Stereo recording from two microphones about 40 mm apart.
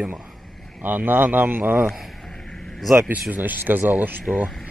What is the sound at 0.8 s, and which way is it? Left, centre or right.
Speech, right.